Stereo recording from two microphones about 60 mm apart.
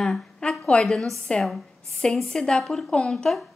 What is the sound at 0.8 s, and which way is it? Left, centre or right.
A woman's voice, centre.